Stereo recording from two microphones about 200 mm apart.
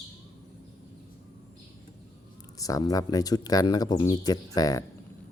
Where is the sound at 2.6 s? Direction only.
15° left (ahead or behind).